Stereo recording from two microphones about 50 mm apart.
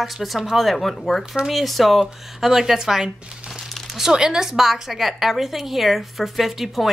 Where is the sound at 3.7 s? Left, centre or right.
Centre.